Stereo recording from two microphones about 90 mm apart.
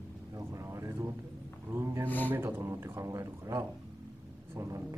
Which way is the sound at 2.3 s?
25° right (ahead or behind).